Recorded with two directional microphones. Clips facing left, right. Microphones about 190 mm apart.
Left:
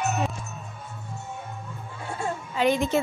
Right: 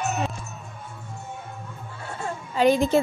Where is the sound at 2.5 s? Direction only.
35° right (ahead or behind).